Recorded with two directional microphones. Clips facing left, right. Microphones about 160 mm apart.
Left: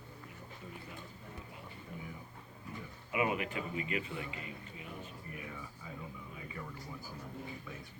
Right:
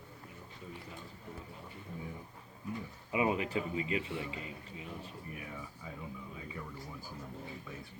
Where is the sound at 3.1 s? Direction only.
25° right (ahead or behind).